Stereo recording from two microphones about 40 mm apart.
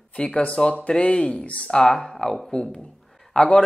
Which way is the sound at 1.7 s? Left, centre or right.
Centre.